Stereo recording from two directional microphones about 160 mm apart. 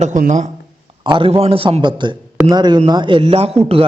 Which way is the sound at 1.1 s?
35° right (ahead or behind).